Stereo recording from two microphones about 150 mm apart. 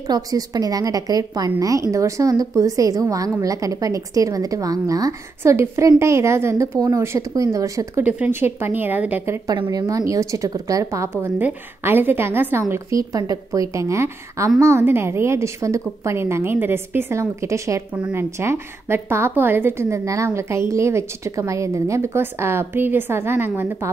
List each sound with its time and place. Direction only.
0.1 s a woman's voice: 25° right (ahead or behind)
8.0 s a woman's voice: 10° right (ahead or behind)